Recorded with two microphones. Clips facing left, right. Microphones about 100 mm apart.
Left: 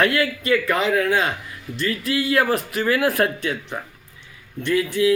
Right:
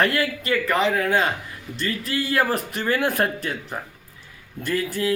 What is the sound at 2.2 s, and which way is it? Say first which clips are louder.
Speech: left 2 dB; centre (ahead or behind).